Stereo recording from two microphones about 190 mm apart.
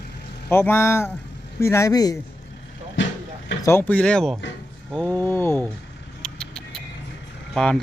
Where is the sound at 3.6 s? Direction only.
15° left (ahead or behind).